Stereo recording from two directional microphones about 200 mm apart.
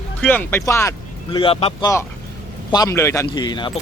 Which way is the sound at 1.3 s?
25° left (ahead or behind).